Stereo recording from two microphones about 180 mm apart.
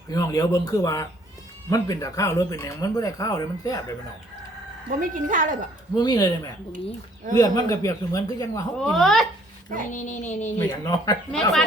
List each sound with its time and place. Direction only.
0.1 s speech: 20° left (ahead or behind)
4.9 s speech: 50° right (ahead or behind)
6.0 s speech: 20° left (ahead or behind)
8.8 s speech: centre (ahead or behind)
9.9 s speech: 40° left (ahead or behind)
10.6 s speech: 20° left (ahead or behind)
11.3 s speech: 5° left (ahead or behind)